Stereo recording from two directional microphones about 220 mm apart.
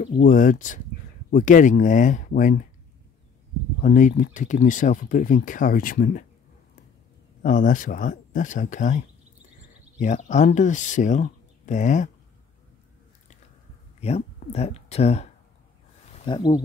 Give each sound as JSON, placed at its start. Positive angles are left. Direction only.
{"t": 0.2, "sound": "speech", "side_deg": 35}
{"t": 3.8, "sound": "speech", "side_deg": 40}
{"t": 7.4, "sound": "speech", "side_deg": 35}
{"t": 13.9, "sound": "speech", "side_deg": 30}
{"t": 16.3, "sound": "speech", "side_deg": 20}